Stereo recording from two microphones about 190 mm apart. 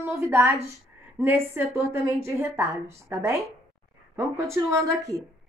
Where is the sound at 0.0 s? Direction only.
15° right (ahead or behind).